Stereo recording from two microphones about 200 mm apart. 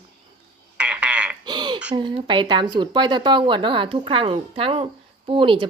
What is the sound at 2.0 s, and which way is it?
Speech, 25° right (ahead or behind).